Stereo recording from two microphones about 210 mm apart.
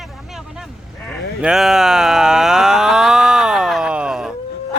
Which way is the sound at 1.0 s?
Centre (ahead or behind).